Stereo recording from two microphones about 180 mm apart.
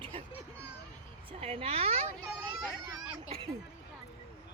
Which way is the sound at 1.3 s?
30° right (ahead or behind).